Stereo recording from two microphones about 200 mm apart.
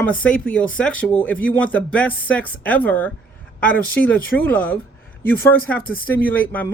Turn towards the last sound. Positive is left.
turn(degrees=10)  # may be behind; listen again after turning